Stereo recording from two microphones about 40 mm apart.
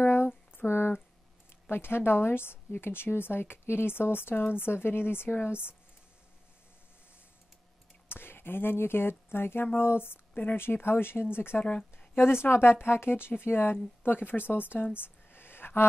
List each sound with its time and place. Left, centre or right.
0.0 s a sound: left
1.7 s a woman's voice: left
8.1 s a woman's voice: left
11.6 s a woman's voice: left
12.2 s a woman's voice: left
13.4 s speech: left
14.5 s a sound: left